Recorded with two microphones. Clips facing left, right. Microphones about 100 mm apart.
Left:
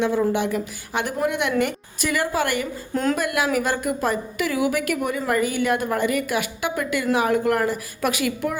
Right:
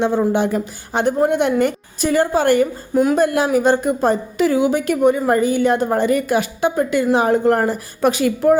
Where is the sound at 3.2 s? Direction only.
30° right (ahead or behind).